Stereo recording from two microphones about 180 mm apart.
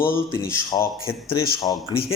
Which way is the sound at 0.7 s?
30° left (ahead or behind).